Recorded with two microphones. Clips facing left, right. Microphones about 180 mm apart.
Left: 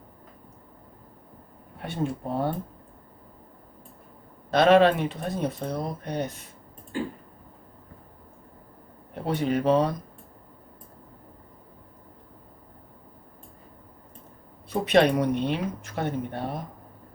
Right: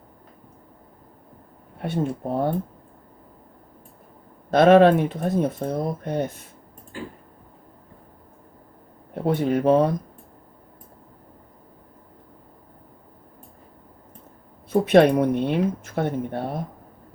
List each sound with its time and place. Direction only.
1.8 s speech: 50° right (ahead or behind)
4.5 s speech: 50° right (ahead or behind)
9.2 s speech: 50° right (ahead or behind)
14.7 s speech: 50° right (ahead or behind)